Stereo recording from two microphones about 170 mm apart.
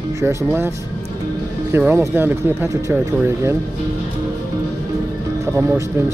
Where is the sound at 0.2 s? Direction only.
15° right (ahead or behind).